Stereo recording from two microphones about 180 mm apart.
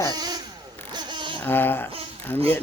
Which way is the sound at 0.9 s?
25° right (ahead or behind).